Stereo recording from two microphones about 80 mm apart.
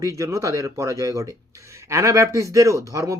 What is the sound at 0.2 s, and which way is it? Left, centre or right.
A man's voice, right.